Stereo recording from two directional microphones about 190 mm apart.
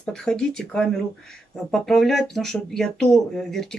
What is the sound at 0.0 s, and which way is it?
Speech, 5° left (ahead or behind).